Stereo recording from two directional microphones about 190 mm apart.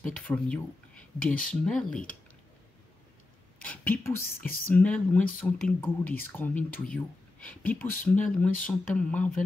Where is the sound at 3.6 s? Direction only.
10° left (ahead or behind).